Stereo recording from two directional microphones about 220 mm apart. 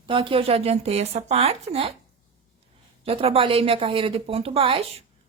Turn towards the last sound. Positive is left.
turn(degrees=-25)  # may be behind; listen again after turning